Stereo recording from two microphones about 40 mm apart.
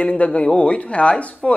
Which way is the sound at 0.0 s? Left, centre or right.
Left.